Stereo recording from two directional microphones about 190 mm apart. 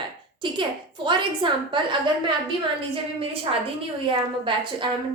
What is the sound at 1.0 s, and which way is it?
A woman's voice, 25° right (ahead or behind).